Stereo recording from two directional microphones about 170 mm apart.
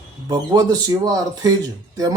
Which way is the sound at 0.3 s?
25° right (ahead or behind).